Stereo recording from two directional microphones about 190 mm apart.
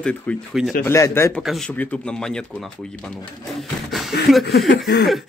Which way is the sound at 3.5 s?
Centre (ahead or behind).